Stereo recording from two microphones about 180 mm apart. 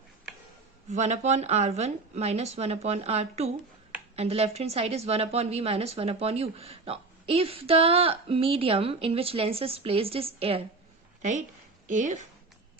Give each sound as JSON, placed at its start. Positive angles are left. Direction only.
{"t": 0.9, "sound": "a woman's voice", "side_deg": -40}
{"t": 11.2, "sound": "a woman's voice", "side_deg": -40}